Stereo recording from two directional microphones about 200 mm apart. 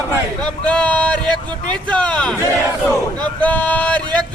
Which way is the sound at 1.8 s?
5° left (ahead or behind).